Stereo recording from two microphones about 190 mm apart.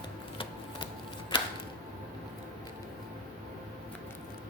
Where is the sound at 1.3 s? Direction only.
25° left (ahead or behind).